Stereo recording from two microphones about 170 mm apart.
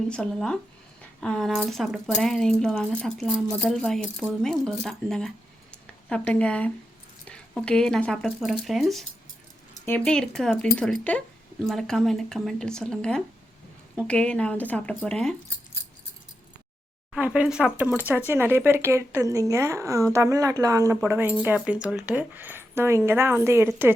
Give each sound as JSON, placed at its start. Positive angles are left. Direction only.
{"t": 0.1, "sound": "speech", "side_deg": 5}
{"t": 9.7, "sound": "a sound", "side_deg": 15}
{"t": 10.0, "sound": "speech", "side_deg": 5}
{"t": 17.2, "sound": "a woman's voice", "side_deg": -10}